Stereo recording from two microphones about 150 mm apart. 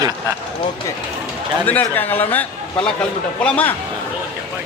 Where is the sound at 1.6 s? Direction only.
10° left (ahead or behind).